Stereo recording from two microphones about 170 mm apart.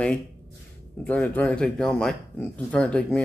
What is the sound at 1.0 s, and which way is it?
A man's voice, 10° left (ahead or behind).